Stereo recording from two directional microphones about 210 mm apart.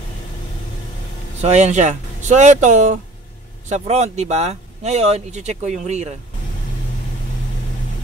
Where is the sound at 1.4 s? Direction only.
30° right (ahead or behind).